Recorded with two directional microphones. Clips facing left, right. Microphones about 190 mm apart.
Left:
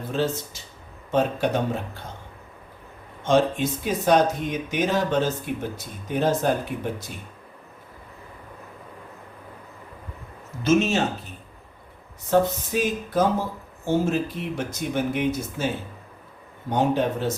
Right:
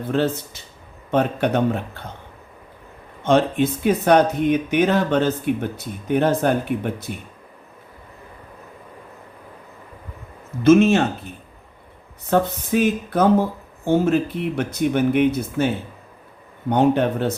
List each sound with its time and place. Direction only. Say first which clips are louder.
0.1 s speech: right 4 dB; 60° right (ahead or behind)
3.2 s speech: right 3 dB; 60° right (ahead or behind)
10.6 s speech: right 7 dB; 55° right (ahead or behind)
12.3 s speech: right 2 dB; 60° right (ahead or behind)